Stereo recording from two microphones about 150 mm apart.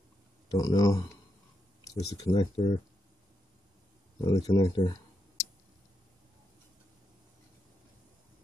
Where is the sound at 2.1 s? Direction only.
25° left (ahead or behind).